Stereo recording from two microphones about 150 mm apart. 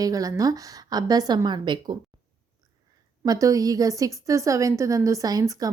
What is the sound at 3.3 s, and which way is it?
Speech, 25° right (ahead or behind).